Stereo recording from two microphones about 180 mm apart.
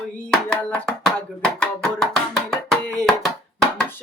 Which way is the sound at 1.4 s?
5° left (ahead or behind).